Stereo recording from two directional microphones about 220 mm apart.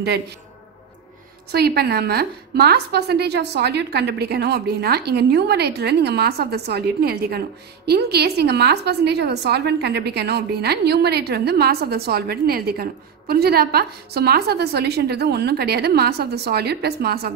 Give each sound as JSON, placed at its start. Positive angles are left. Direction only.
{"t": 1.5, "sound": "a woman's voice", "side_deg": -45}